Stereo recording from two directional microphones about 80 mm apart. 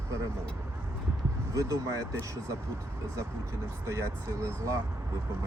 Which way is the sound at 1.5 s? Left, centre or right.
Right.